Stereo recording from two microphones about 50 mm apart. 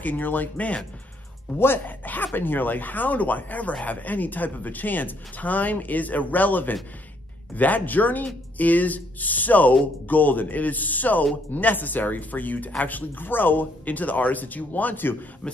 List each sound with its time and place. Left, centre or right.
0.0 s speech: left
15.4 s a man's voice: left